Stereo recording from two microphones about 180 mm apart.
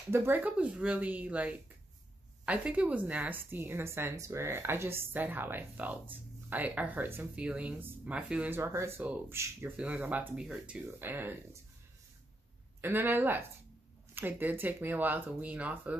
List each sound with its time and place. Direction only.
0.1 s a woman's voice: 10° right (ahead or behind)
12.8 s a woman's voice: 10° right (ahead or behind)